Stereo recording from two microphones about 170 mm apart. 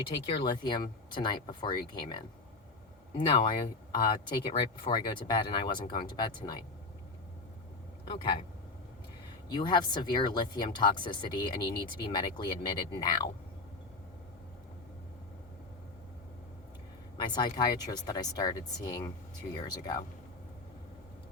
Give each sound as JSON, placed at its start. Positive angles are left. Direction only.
{"t": 0.4, "sound": "speech", "side_deg": 25}
{"t": 8.0, "sound": "speech", "side_deg": 30}
{"t": 9.5, "sound": "speech", "side_deg": 25}
{"t": 17.2, "sound": "speech", "side_deg": 25}